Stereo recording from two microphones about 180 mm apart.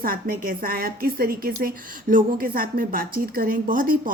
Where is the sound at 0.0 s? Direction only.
55° right (ahead or behind).